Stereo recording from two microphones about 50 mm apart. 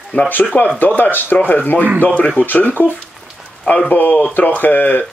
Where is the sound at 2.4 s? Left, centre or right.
Left.